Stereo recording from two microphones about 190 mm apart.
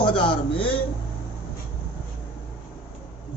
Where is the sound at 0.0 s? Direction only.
25° left (ahead or behind).